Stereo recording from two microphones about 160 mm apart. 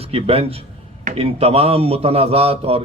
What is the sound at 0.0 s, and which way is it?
A man's voice, 35° right (ahead or behind).